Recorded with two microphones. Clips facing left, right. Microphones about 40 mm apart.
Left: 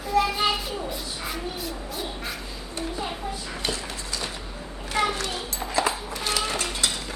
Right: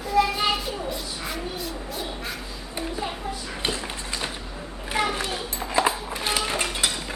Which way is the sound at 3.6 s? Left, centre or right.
Right.